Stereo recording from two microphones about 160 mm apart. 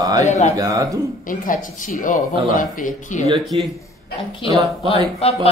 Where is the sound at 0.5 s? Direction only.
20° right (ahead or behind).